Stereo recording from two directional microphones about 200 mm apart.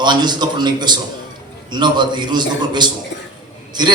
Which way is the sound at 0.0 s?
20° right (ahead or behind).